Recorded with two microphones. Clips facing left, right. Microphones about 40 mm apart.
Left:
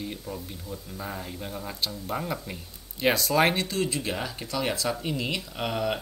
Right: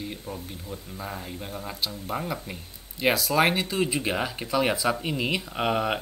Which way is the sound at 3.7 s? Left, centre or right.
Right.